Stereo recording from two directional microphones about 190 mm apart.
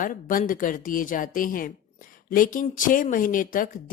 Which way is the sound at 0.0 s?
45° left (ahead or behind).